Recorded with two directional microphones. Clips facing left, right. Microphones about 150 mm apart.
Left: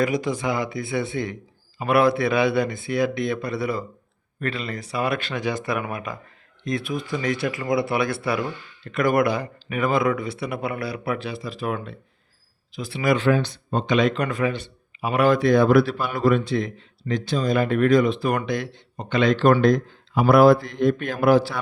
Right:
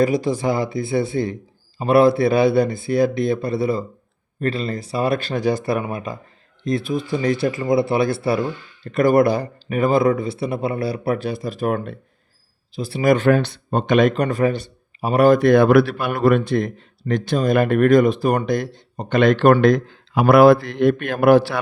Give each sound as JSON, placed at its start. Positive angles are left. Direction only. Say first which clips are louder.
{"t": 0.0, "sound": "speech", "louder": "right 5 dB", "side_deg": -30}
{"t": 12.7, "sound": "speech", "louder": "right 5 dB", "side_deg": -35}